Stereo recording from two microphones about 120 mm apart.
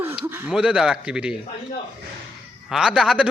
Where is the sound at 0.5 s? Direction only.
5° right (ahead or behind).